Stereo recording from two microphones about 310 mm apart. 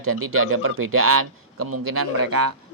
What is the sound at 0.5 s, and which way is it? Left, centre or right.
A man's voice, right.